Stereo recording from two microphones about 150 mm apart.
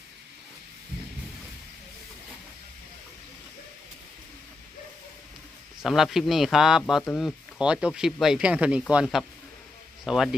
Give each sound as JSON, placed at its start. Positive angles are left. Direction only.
{"t": 5.8, "sound": "speech", "side_deg": 0}